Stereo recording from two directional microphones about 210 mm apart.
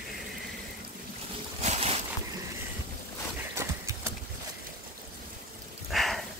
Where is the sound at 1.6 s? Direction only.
30° right (ahead or behind).